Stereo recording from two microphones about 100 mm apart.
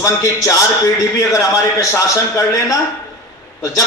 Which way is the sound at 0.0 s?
30° left (ahead or behind).